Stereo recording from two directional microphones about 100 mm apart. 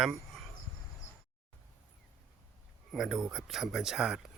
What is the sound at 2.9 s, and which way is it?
Speech, 5° right (ahead or behind).